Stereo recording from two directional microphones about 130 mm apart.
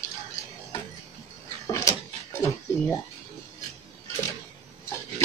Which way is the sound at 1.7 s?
25° left (ahead or behind).